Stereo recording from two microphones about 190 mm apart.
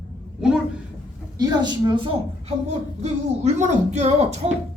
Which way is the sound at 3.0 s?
40° right (ahead or behind).